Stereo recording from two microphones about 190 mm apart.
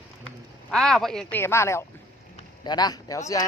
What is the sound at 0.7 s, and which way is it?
A man's voice, centre (ahead or behind).